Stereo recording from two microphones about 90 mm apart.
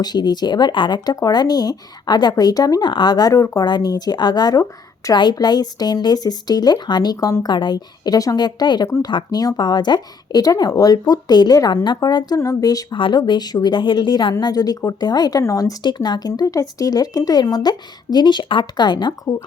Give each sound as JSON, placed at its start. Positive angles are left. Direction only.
{"t": 0.0, "sound": "speech", "side_deg": 50}
{"t": 2.8, "sound": "speech", "side_deg": 55}
{"t": 3.6, "sound": "speech", "side_deg": 50}
{"t": 12.4, "sound": "speech", "side_deg": 40}
{"t": 12.9, "sound": "speech", "side_deg": 60}
{"t": 15.8, "sound": "speech", "side_deg": 55}